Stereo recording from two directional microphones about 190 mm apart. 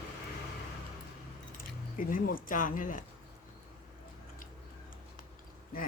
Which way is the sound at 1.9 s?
45° left (ahead or behind).